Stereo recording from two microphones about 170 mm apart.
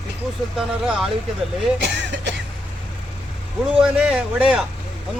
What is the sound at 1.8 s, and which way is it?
Vehicle, 90° right.